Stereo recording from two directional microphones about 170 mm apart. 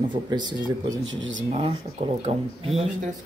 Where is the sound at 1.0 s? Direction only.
90° right.